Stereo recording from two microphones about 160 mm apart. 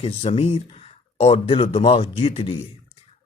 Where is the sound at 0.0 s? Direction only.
40° left (ahead or behind).